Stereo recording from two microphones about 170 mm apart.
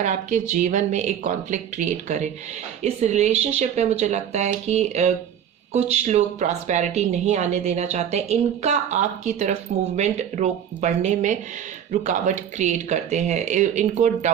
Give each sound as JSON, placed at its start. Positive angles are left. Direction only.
{"t": 0.0, "sound": "a woman's voice", "side_deg": -45}